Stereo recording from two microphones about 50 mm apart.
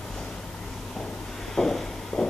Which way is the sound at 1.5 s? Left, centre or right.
Centre.